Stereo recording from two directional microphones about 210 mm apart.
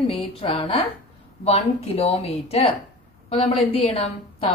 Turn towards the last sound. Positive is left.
turn(degrees=25)  # may be behind; listen again after turning